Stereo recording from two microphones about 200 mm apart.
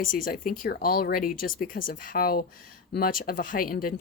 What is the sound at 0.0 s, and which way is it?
Speech, 45° left (ahead or behind).